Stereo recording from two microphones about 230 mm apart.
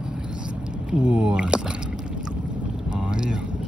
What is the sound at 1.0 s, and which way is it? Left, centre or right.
Speech, centre.